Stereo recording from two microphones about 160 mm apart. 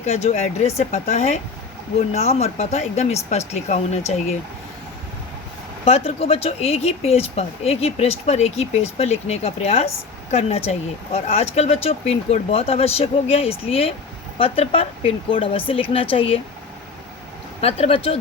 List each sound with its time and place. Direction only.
0.0 s speech: 45° left (ahead or behind)
5.8 s speech: 40° left (ahead or behind)
17.6 s speech: 40° left (ahead or behind)